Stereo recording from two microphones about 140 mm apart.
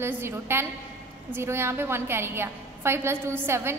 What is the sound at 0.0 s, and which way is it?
A woman's voice, 15° right (ahead or behind).